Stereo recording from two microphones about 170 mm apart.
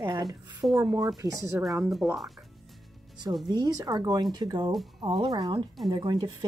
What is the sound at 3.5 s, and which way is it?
A woman's voice, 25° right (ahead or behind).